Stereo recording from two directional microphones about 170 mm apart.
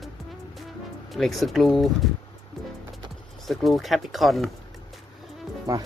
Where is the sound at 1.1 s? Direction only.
Centre (ahead or behind).